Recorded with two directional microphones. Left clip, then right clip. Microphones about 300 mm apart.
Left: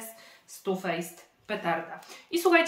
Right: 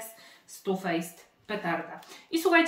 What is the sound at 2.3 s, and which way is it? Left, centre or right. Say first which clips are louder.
Speech: left 1 dB; centre.